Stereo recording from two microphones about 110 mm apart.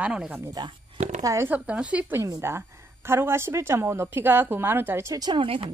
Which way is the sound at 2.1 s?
25° right (ahead or behind).